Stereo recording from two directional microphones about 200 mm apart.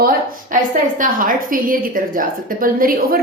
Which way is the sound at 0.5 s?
40° right (ahead or behind).